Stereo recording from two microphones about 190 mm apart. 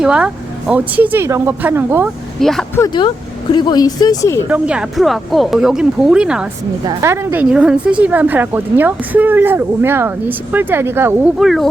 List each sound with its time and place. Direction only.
0.0 s a woman's voice: 5° right (ahead or behind)
2.4 s speech: centre (ahead or behind)
2.7 s speech: 20° left (ahead or behind)
4.4 s a woman's voice: 5° right (ahead or behind)
11.3 s speech: centre (ahead or behind)